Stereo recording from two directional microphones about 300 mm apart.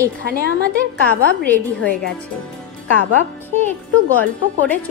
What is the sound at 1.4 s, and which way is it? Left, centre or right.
Speech, centre.